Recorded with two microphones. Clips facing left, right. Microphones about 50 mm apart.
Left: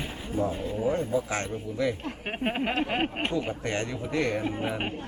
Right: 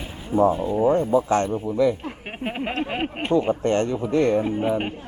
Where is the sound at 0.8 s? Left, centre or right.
Right.